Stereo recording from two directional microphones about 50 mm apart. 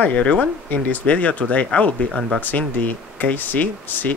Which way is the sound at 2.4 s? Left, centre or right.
Left.